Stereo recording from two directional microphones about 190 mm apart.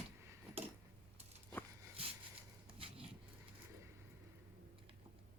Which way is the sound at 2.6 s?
30° right (ahead or behind).